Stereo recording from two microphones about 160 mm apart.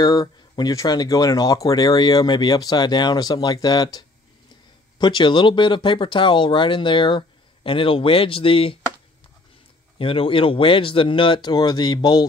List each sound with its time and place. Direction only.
0.0 s speech: 25° left (ahead or behind)
9.9 s speech: 35° left (ahead or behind)